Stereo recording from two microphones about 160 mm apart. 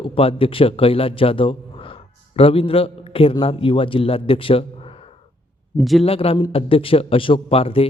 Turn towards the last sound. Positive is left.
turn(degrees=35)  # may be behind; listen again after turning